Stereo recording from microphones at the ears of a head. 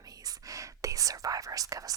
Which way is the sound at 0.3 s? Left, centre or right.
Right.